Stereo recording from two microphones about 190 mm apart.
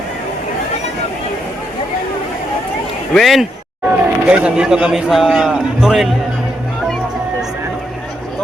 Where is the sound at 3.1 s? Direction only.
Centre (ahead or behind).